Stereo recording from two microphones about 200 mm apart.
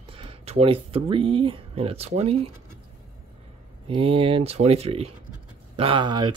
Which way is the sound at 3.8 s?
25° right (ahead or behind).